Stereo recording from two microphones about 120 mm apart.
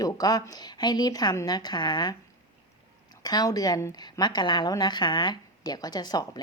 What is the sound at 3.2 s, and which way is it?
A woman's voice, 30° left (ahead or behind).